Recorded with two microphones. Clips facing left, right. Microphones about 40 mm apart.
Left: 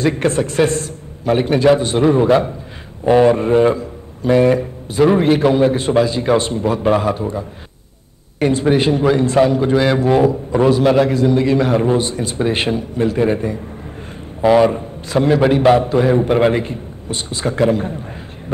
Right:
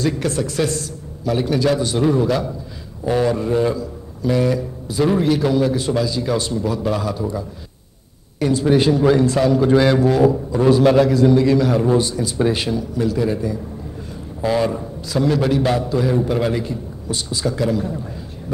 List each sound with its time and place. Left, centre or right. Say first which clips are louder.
0.0 s a man's voice: left 4 dB; left